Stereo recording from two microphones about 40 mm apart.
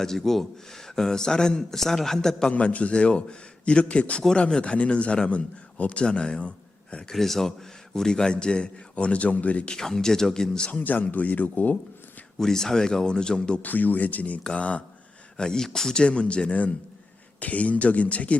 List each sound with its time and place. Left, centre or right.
0.0 s a man's voice: centre
2.5 s a man's voice: left
6.1 s a man's voice: left
7.1 s a man's voice: centre
7.9 s a man's voice: centre; by 9.6 s left
9.6 s a man's voice: centre
10.7 s speech: left
12.4 s a man's voice: centre
13.6 s speech: left
15.4 s a man's voice: centre
16.0 s a man's voice: left